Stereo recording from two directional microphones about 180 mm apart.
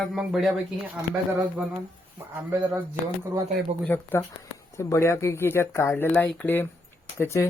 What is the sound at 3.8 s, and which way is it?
Speech, 10° left (ahead or behind).